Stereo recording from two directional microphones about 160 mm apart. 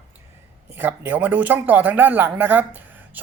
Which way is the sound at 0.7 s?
10° right (ahead or behind).